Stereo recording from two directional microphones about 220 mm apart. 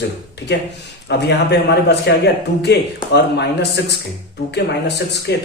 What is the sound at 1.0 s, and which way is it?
A man's voice, 50° left (ahead or behind).